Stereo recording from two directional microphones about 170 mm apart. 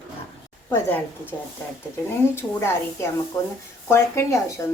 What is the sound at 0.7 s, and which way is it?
Speech, 10° left (ahead or behind).